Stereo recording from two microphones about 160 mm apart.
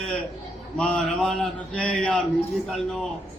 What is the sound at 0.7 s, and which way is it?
A man's voice, 5° left (ahead or behind).